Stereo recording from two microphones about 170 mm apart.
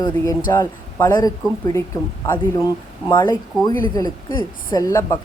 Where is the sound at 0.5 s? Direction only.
15° left (ahead or behind).